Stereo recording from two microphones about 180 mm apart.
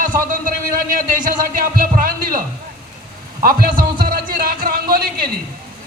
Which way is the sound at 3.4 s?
50° right (ahead or behind).